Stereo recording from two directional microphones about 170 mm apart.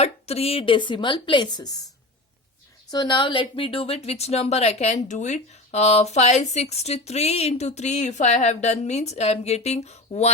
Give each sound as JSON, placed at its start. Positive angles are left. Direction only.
{"t": 0.0, "sound": "a woman's voice", "side_deg": 35}
{"t": 2.9, "sound": "speech", "side_deg": 25}